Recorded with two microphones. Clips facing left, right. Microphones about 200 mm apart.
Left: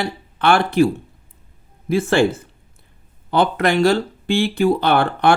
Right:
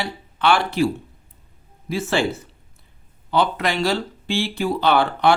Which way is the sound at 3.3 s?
55° left (ahead or behind).